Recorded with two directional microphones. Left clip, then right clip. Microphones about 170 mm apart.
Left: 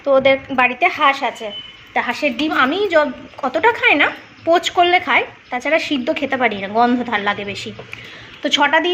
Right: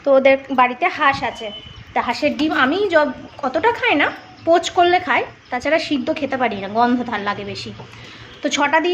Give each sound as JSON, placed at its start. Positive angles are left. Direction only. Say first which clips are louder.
{"t": 0.0, "sound": "a woman's voice", "louder": "even", "side_deg": -15}
{"t": 0.6, "sound": "a woman's voice", "louder": "left 3 dB", "side_deg": 0}
{"t": 3.4, "sound": "speech", "louder": "left 3 dB", "side_deg": 0}
{"t": 8.4, "sound": "speech", "louder": "left 2 dB", "side_deg": -5}